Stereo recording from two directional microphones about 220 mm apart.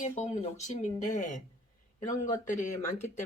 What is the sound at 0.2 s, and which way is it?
Speech, 30° left (ahead or behind).